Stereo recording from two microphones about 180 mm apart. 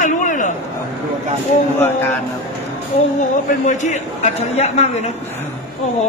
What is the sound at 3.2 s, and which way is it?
A man's voice, 40° left (ahead or behind).